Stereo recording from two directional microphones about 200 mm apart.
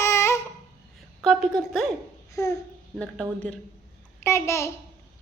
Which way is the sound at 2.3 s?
15° left (ahead or behind).